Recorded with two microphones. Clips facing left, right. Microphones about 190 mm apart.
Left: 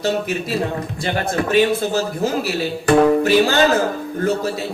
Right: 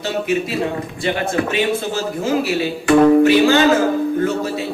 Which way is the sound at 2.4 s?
40° left (ahead or behind).